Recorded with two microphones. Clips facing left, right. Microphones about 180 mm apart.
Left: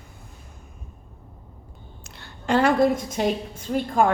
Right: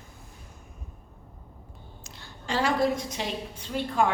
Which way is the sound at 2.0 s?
60° left (ahead or behind).